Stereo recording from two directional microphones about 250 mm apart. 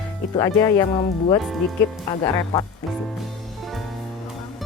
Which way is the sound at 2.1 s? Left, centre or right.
Centre.